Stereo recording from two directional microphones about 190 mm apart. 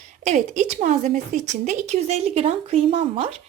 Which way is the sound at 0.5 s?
40° right (ahead or behind).